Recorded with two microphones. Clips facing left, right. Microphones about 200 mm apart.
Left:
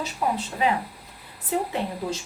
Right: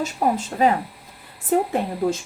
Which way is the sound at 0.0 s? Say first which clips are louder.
Right 5 dB; 45° right (ahead or behind).